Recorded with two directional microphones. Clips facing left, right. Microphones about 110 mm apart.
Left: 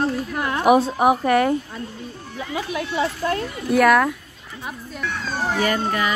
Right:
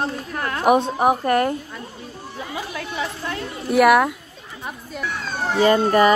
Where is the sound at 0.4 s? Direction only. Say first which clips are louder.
Even; 20° left (ahead or behind).